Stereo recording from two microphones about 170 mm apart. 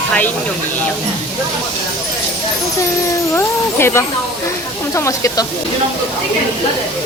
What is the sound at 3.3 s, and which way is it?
Speech, 15° left (ahead or behind).